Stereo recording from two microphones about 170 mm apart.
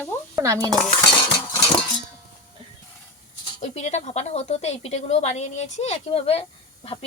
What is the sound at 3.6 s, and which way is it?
A woman's voice, 40° left (ahead or behind).